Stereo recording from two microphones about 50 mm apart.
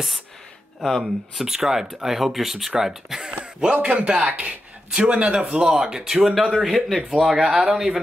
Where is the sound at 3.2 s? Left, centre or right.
Right.